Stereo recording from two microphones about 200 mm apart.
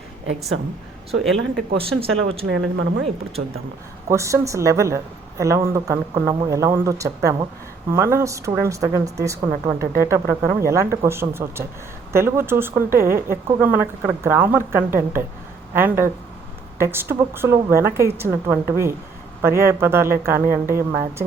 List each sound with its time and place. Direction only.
1.2 s speech: centre (ahead or behind)
2.5 s speech: 65° right (ahead or behind)
4.1 s speech: 15° right (ahead or behind)